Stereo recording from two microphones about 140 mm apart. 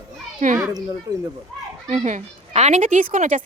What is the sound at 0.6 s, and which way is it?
Speech, 25° right (ahead or behind).